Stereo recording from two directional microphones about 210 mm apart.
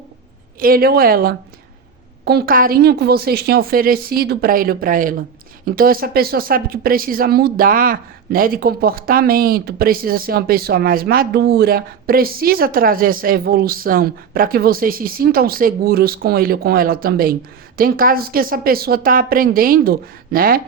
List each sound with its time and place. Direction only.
0.6 s a woman's voice: 45° right (ahead or behind)